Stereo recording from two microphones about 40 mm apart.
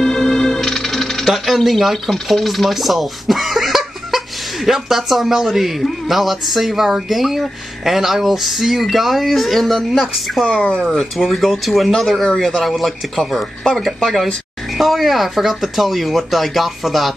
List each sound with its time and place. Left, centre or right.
0.0 s music: centre
1.3 s speech: centre
10.5 s speech: left
11.2 s speech: centre